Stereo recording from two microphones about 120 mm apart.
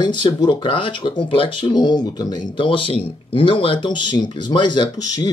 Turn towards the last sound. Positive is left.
turn(degrees=30)  # may be behind; listen again after turning